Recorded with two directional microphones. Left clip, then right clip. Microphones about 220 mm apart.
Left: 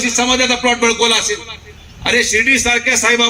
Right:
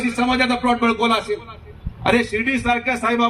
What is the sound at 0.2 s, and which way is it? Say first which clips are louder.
A man's voice: left 4 dB; 45° right (ahead or behind).